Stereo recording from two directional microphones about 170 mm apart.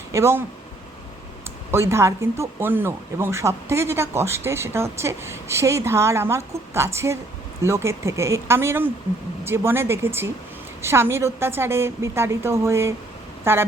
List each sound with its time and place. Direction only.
0.1 s speech: 15° right (ahead or behind)
1.7 s speech: 15° right (ahead or behind)